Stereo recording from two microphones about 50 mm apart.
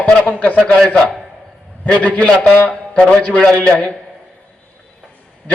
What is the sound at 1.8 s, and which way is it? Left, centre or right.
A man's voice, left.